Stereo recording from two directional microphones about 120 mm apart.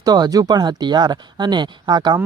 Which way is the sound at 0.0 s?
35° right (ahead or behind).